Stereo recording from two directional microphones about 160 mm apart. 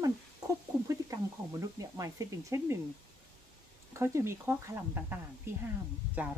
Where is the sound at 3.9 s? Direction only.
15° right (ahead or behind).